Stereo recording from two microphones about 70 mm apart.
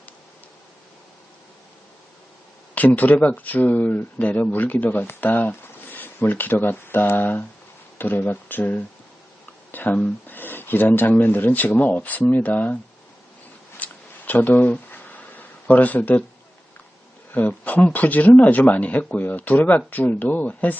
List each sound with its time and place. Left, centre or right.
2.7 s speech: left
13.7 s a sound: left
17.3 s speech: left